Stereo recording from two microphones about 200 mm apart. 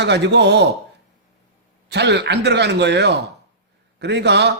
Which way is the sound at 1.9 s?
60° right (ahead or behind).